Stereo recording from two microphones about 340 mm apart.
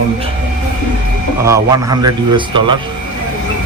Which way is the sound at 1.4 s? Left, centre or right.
Centre.